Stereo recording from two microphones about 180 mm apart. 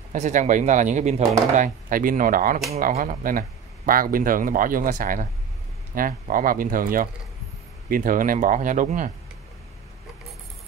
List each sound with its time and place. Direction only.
0.1 s speech: 45° right (ahead or behind)